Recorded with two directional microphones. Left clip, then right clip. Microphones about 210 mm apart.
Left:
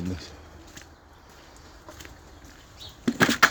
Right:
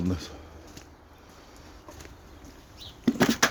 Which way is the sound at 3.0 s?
25° right (ahead or behind).